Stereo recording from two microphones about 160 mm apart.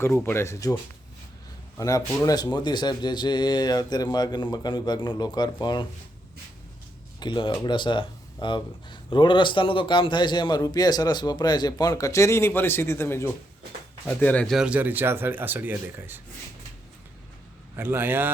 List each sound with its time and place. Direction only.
0.0 s speech: 15° left (ahead or behind)
1.8 s speech: 20° left (ahead or behind)
7.2 s speech: 30° left (ahead or behind); by 16.2 s 15° right (ahead or behind)
17.7 s speech: 15° right (ahead or behind)